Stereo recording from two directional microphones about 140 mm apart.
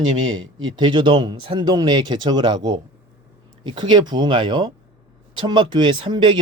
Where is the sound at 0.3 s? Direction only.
35° right (ahead or behind).